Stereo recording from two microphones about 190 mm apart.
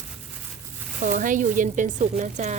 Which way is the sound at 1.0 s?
45° right (ahead or behind).